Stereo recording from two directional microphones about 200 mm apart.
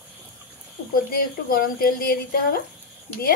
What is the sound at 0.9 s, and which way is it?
Speech, 45° left (ahead or behind).